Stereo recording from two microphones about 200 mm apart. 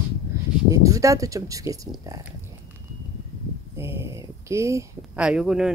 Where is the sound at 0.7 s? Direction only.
15° right (ahead or behind).